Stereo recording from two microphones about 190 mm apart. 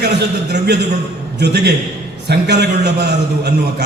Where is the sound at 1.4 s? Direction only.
60° right (ahead or behind).